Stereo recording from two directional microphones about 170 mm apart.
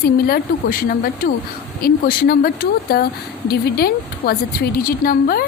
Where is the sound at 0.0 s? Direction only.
60° left (ahead or behind).